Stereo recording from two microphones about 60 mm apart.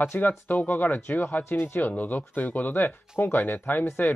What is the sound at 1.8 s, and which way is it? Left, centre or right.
Speech, left.